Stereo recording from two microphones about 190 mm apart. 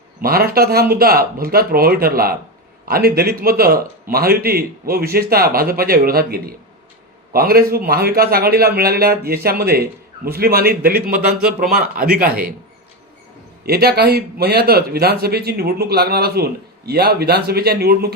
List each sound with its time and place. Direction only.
0.2 s speech: 50° right (ahead or behind)
12.1 s speech: 50° right (ahead or behind)
13.7 s speech: 55° right (ahead or behind)